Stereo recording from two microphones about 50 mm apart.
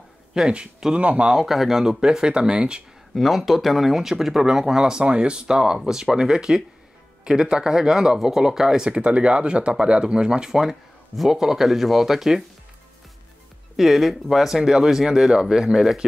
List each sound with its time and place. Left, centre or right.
0.5 s speech: right
1.3 s speech: centre
3.2 s speech: centre
13.7 s speech: centre